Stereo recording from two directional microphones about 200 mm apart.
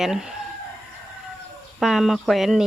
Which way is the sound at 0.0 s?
5° right (ahead or behind).